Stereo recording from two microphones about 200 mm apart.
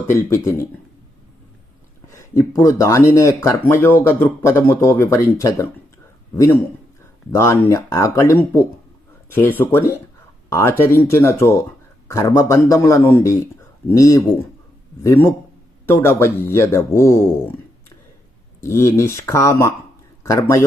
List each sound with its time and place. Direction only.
0.3 s speech: 15° left (ahead or behind)
2.0 s speech: 15° left (ahead or behind)
18.6 s speech: 15° left (ahead or behind)